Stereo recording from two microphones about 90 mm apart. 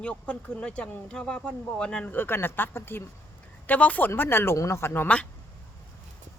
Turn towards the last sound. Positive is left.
turn(degrees=25)  # may be behind; listen again after turning